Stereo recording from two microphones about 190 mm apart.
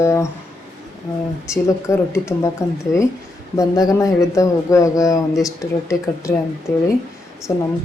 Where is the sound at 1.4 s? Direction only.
15° left (ahead or behind).